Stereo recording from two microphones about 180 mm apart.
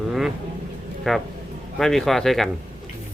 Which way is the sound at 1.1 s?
Centre (ahead or behind).